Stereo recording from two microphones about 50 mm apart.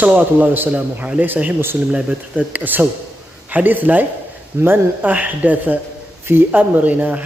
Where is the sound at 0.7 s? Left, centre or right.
Right.